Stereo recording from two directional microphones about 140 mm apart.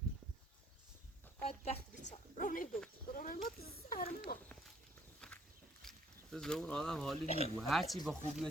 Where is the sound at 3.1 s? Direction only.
90° left.